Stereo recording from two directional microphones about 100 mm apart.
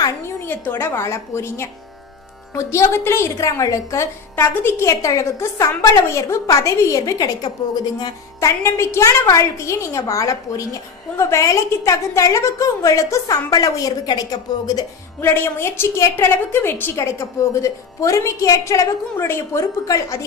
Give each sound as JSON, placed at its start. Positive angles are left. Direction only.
{"t": 0.4, "sound": "a woman's voice", "side_deg": 20}
{"t": 15.2, "sound": "a woman's voice", "side_deg": 25}